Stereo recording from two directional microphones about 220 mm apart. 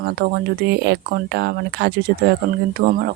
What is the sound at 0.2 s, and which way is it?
Speech, 50° right (ahead or behind).